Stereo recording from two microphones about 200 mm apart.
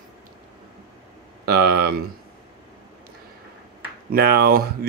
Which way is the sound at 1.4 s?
50° right (ahead or behind).